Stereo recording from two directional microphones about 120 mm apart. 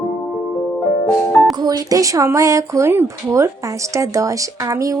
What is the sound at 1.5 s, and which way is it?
Speech, 30° right (ahead or behind).